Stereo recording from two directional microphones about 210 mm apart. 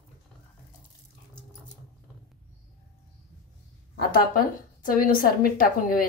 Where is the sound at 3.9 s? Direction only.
45° left (ahead or behind).